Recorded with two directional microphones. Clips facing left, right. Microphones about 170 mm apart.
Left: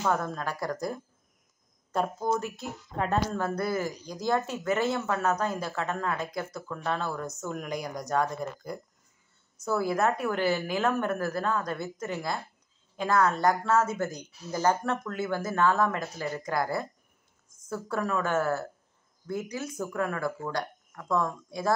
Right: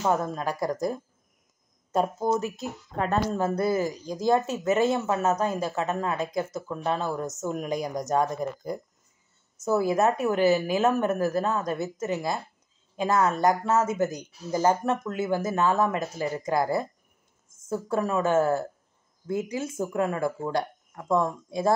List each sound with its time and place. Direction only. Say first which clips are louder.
0.0 s speech: right 3 dB; 20° right (ahead or behind)